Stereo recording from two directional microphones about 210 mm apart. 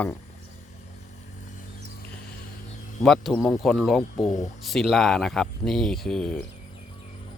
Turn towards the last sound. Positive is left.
turn(degrees=5)  # may be behind; listen again after turning